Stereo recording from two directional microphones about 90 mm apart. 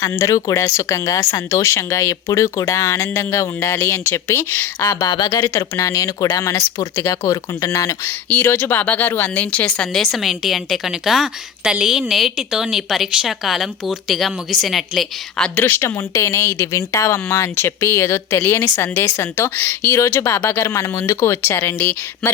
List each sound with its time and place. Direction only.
0.0 s speech: 35° left (ahead or behind)
5.3 s speech: 35° left (ahead or behind)
8.3 s speech: 20° left (ahead or behind); by 15.4 s centre (ahead or behind)
15.5 s speech: 20° left (ahead or behind)